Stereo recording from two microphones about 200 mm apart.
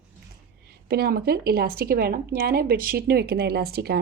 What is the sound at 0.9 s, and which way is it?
Speech, 50° right (ahead or behind).